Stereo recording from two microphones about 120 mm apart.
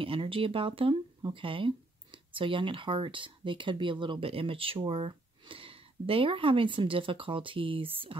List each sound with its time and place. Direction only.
0.0 s speech: 50° right (ahead or behind)